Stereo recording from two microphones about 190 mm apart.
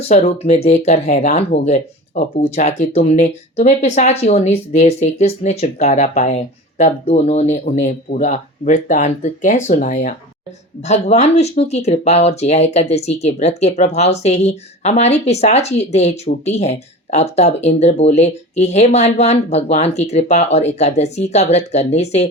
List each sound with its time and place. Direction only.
0.1 s speech: 35° left (ahead or behind)